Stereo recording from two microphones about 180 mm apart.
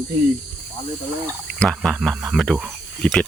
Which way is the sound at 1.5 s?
5° left (ahead or behind).